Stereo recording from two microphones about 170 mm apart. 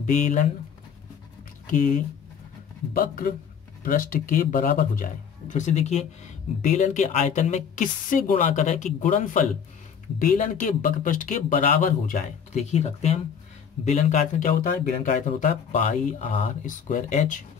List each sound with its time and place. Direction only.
0.0 s speech: 50° left (ahead or behind)
1.7 s a man's voice: 50° left (ahead or behind)